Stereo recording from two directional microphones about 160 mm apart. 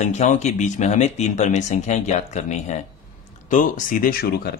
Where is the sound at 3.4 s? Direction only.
55° left (ahead or behind); by 4.5 s 75° left (ahead or behind).